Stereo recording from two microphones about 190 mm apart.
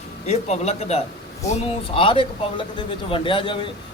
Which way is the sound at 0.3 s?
35° left (ahead or behind).